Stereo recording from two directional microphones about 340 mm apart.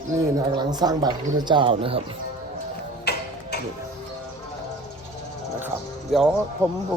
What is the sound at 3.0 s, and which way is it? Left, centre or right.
Music, left.